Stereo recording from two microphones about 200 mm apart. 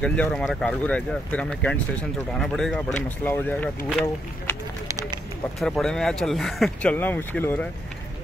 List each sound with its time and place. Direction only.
0.0 s speech: 5° left (ahead or behind)
4.0 s a sound: 15° left (ahead or behind)
5.6 s speech: centre (ahead or behind)